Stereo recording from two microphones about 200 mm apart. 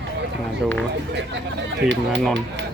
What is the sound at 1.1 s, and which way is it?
Speech, 60° right (ahead or behind).